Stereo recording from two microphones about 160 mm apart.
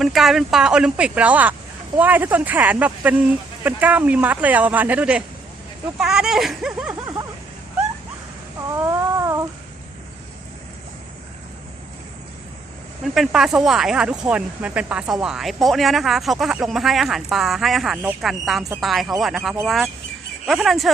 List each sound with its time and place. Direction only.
0.0 s speech: centre (ahead or behind)
8.7 s a sound: 20° right (ahead or behind)
13.1 s speech: 5° right (ahead or behind)